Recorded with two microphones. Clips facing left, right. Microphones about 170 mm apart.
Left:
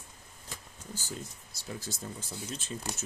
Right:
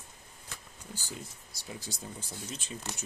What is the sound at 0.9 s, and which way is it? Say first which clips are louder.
Speech: left 2 dB; 15° right (ahead or behind).